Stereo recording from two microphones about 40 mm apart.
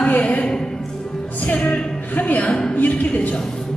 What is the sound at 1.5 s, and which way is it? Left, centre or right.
A woman's voice, left.